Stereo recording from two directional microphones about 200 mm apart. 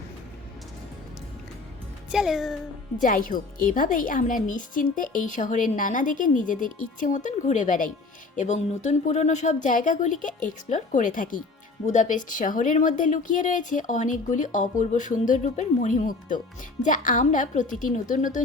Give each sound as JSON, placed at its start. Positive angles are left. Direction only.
{"t": 2.1, "sound": "a child's voice", "side_deg": 0}
{"t": 3.0, "sound": "speech", "side_deg": 40}